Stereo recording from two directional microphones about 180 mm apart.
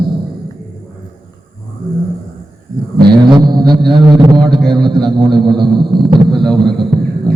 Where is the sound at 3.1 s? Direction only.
25° right (ahead or behind).